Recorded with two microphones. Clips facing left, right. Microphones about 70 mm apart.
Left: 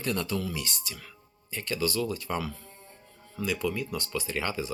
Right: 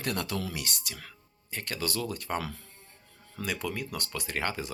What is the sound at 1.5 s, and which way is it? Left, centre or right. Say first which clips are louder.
Speech: left 4 dB; right.